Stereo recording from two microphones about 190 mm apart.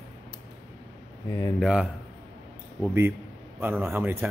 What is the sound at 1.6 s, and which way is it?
Speech, centre (ahead or behind).